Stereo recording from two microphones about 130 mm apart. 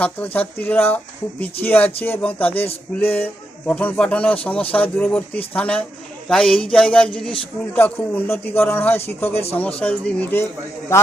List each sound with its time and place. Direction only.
0.0 s speech: 10° left (ahead or behind)